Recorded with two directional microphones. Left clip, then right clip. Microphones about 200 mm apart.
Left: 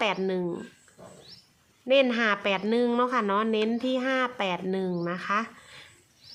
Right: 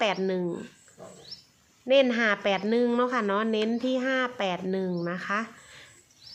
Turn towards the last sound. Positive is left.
turn(degrees=5)  # may be behind; listen again after turning